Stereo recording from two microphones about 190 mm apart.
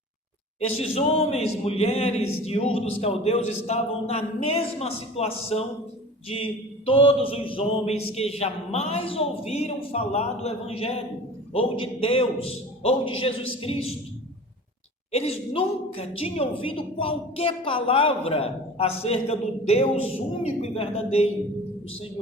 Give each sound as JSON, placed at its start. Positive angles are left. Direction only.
{"t": 0.8, "sound": "a woman's voice", "side_deg": 30}
{"t": 15.1, "sound": "a woman's voice", "side_deg": 30}